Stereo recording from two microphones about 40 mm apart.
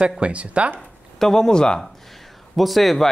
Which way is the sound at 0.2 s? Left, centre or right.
Right.